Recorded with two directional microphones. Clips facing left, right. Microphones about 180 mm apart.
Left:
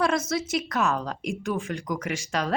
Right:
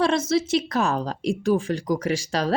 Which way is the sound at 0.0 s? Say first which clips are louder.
Right 4 dB; 30° right (ahead or behind).